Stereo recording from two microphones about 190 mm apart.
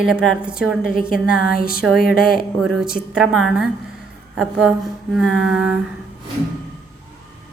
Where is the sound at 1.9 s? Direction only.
50° left (ahead or behind).